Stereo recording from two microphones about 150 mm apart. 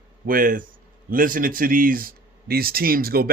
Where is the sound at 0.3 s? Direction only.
65° right (ahead or behind).